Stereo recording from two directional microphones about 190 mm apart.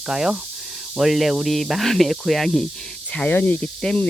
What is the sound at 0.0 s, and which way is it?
Speech, centre (ahead or behind).